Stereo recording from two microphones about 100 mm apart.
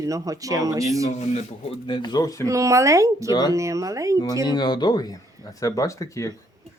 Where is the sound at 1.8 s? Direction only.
50° left (ahead or behind).